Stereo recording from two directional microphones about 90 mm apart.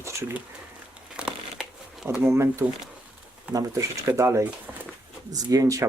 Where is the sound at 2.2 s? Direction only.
30° right (ahead or behind).